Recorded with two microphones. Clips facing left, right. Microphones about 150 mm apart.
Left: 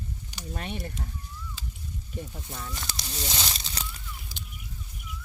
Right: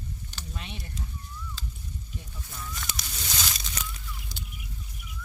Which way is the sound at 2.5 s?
30° left (ahead or behind).